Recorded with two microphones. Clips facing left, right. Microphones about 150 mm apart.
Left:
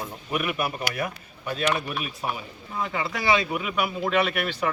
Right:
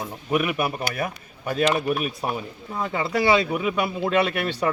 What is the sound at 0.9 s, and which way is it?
A man's voice, 50° right (ahead or behind).